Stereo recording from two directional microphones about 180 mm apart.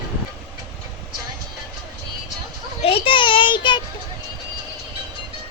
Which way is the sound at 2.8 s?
30° left (ahead or behind).